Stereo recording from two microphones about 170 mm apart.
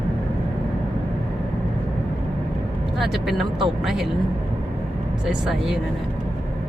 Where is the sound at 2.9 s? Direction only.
Centre (ahead or behind).